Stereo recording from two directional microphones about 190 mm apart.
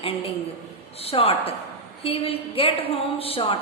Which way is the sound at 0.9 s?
30° left (ahead or behind).